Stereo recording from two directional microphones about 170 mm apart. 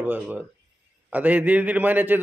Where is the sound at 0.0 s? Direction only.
10° right (ahead or behind).